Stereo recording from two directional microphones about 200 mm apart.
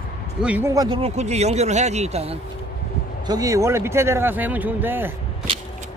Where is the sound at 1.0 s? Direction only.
35° right (ahead or behind).